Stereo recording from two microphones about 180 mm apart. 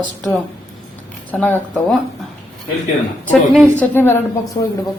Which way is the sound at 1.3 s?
10° left (ahead or behind).